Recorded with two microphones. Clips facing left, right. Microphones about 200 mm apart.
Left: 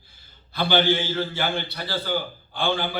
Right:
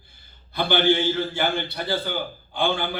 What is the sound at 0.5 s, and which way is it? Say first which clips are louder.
A man's voice: right 1 dB; 55° right (ahead or behind).